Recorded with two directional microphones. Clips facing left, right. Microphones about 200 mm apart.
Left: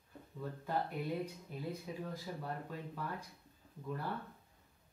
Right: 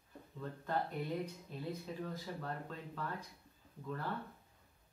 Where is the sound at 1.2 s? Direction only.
10° left (ahead or behind).